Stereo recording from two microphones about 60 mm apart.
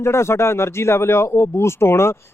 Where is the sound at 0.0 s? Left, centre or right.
Left.